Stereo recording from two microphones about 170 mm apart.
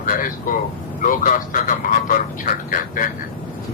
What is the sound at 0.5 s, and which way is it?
Speech, 55° left (ahead or behind).